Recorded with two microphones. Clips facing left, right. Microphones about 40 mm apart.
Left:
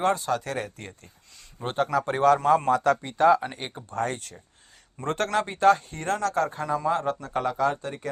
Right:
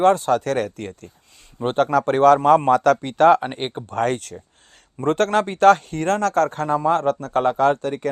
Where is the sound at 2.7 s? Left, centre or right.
Right.